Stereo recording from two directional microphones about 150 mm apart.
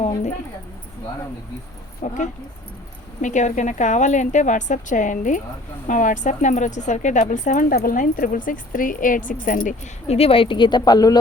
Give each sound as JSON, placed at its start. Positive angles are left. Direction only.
{"t": 2.0, "sound": "speech", "side_deg": 55}